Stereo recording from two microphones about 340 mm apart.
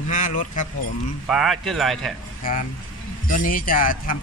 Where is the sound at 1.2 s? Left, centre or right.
Centre.